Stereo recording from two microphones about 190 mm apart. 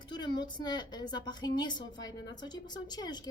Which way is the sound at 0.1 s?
25° left (ahead or behind).